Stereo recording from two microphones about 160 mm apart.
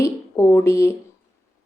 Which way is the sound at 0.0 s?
15° left (ahead or behind).